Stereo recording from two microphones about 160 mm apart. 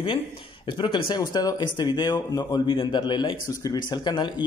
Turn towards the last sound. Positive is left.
turn(degrees=25)  # may be behind; listen again after turning